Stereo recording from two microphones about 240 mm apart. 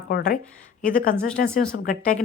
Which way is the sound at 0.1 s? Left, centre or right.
Left.